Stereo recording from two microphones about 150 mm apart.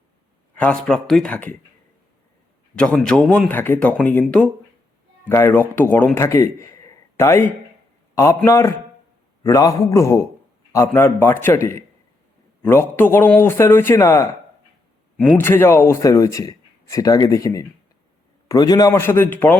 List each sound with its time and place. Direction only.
0.5 s a man's voice: 10° left (ahead or behind)
2.7 s a man's voice: 5° left (ahead or behind)